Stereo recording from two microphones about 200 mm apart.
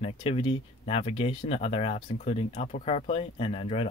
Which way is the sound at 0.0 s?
30° left (ahead or behind).